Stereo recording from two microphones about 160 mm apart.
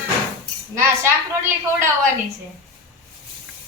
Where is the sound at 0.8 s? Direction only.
15° right (ahead or behind).